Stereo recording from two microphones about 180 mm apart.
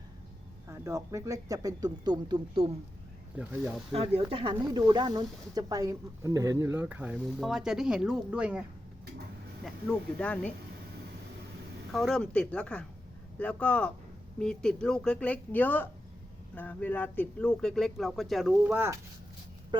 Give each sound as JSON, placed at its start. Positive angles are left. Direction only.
{"t": 0.7, "sound": "speech", "side_deg": -15}
{"t": 3.3, "sound": "speech", "side_deg": -10}
{"t": 3.9, "sound": "speech", "side_deg": -30}
{"t": 9.6, "sound": "speech", "side_deg": 5}
{"t": 11.9, "sound": "speech", "side_deg": 0}
{"t": 19.7, "sound": "speech", "side_deg": -25}